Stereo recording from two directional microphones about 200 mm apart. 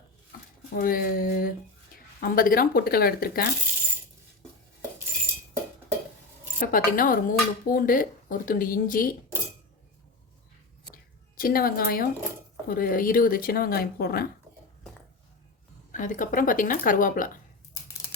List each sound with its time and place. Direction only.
0.7 s speech: 45° left (ahead or behind)
6.6 s speech: 40° left (ahead or behind)
10.9 s a sound: 45° left (ahead or behind)
12.6 s speech: 45° left (ahead or behind)
15.9 s speech: 40° left (ahead or behind)